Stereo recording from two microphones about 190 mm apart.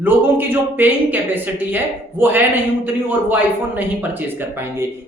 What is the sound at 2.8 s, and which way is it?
A woman's voice, 10° right (ahead or behind).